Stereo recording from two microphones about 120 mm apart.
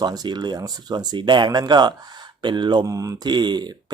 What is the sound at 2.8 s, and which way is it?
Speech, 30° right (ahead or behind).